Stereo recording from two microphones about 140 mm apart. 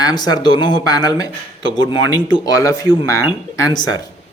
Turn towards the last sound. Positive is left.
turn(degrees=30)  # may be behind; listen again after turning